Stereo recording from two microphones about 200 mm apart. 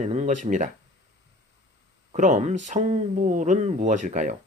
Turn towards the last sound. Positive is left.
turn(degrees=-40)  # may be behind; listen again after turning